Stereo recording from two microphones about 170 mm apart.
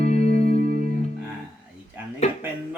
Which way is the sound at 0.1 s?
40° left (ahead or behind).